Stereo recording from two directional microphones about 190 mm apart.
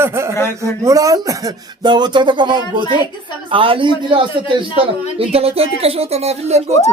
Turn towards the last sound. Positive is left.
turn(degrees=-35)  # may be behind; listen again after turning